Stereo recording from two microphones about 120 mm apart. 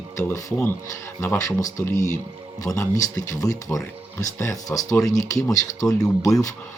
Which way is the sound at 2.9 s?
30° left (ahead or behind).